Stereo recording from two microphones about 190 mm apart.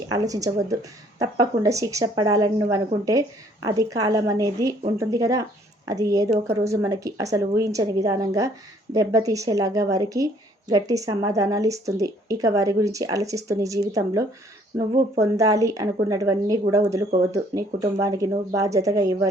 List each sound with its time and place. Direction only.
0.1 s a woman's voice: 20° right (ahead or behind)